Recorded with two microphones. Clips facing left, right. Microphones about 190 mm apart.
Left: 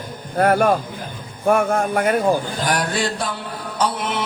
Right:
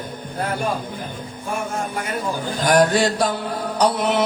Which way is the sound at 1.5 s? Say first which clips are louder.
Left 9 dB; 55° left (ahead or behind).